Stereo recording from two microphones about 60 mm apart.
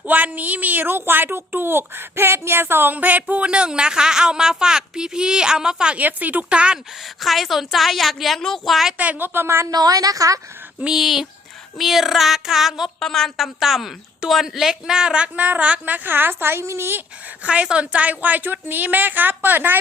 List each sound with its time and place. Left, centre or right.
0.1 s a woman's voice: right; by 6.0 s centre
6.0 s a woman's voice: right
7.2 s a woman's voice: centre
9.0 s a woman's voice: right
9.8 s a woman's voice: right
10.9 s a woman's voice: centre
13.0 s a woman's voice: centre; by 16.0 s right
16.0 s a woman's voice: right
17.4 s a woman's voice: centre